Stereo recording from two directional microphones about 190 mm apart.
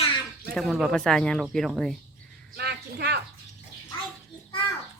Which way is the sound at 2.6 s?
55° right (ahead or behind).